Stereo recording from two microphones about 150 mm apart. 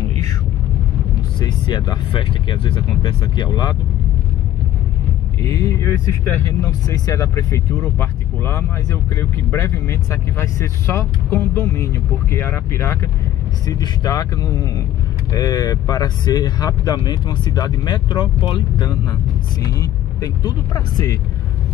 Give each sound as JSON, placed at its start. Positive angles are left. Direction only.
{"t": 1.4, "sound": "speech", "side_deg": 30}
{"t": 5.4, "sound": "speech", "side_deg": 25}